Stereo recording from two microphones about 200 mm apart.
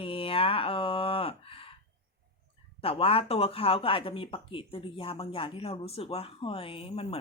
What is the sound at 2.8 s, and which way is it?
Speech, 30° left (ahead or behind).